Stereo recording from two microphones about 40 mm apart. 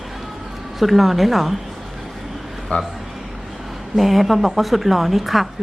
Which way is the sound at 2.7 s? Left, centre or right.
Left.